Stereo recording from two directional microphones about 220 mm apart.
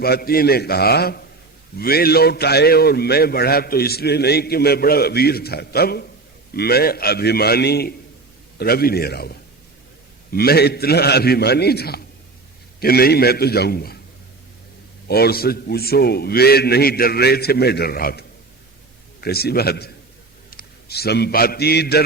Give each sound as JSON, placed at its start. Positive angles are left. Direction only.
{"t": 0.0, "sound": "a man's voice", "side_deg": 45}
{"t": 15.0, "sound": "a man's voice", "side_deg": 45}